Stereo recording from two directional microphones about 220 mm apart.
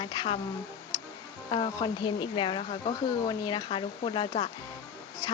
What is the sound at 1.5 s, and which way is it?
Speech, 20° left (ahead or behind).